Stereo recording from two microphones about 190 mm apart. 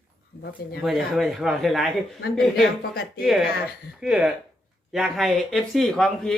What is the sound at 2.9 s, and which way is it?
Speech, 50° left (ahead or behind).